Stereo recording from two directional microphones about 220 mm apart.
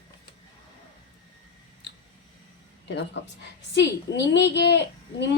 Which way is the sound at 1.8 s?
50° left (ahead or behind).